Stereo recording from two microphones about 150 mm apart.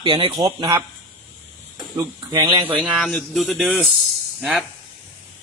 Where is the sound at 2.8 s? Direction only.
Centre (ahead or behind).